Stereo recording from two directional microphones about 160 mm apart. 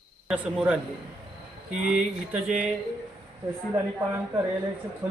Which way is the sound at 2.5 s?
50° right (ahead or behind).